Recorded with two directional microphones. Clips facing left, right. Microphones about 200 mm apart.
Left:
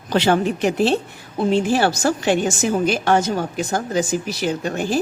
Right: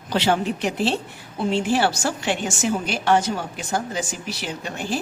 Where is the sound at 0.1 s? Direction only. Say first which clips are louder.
Left 4 dB; 50° left (ahead or behind).